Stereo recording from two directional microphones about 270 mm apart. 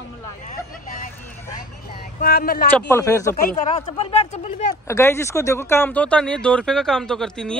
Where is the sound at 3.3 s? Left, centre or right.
Left.